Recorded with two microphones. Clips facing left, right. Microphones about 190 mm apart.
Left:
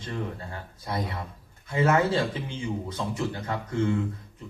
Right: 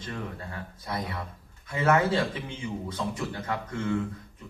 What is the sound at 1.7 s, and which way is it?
Speech, 30° left (ahead or behind).